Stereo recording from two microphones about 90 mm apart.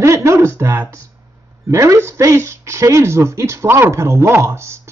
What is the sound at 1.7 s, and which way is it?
Speech, 30° right (ahead or behind).